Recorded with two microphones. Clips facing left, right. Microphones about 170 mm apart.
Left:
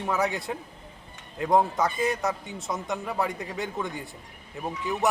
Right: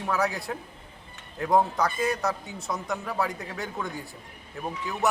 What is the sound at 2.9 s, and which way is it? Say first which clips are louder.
Speech: left 1 dB; 20° left (ahead or behind).